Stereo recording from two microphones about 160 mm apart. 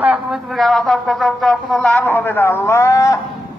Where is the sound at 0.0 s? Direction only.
5° right (ahead or behind).